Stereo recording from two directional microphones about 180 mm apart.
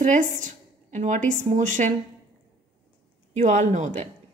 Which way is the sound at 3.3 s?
40° right (ahead or behind).